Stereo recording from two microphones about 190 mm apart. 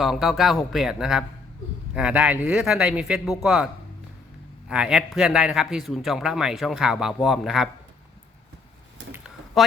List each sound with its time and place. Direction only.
0.0 s a man's voice: centre (ahead or behind)
4.7 s a man's voice: 5° right (ahead or behind)
9.1 s a sound: 5° right (ahead or behind)